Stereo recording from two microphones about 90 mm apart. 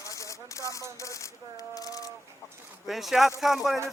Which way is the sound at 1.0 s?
35° left (ahead or behind).